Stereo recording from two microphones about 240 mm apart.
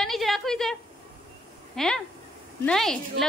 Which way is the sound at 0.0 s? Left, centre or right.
Centre.